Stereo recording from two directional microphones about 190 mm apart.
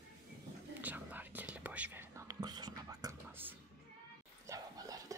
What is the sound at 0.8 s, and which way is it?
Whispering, 10° right (ahead or behind).